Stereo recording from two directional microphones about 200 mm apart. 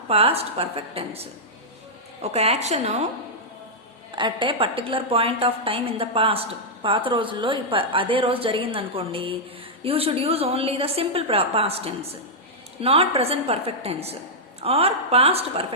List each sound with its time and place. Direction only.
0.1 s a woman's voice: 30° right (ahead or behind)
4.1 s a woman's voice: 25° right (ahead or behind)